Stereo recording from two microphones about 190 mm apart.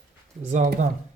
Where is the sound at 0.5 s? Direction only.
40° right (ahead or behind).